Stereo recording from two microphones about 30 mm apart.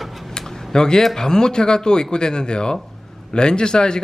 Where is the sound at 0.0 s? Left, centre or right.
Centre.